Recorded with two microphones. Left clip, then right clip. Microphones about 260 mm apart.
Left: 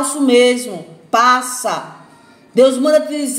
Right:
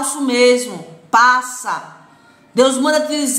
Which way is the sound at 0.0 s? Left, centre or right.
Centre.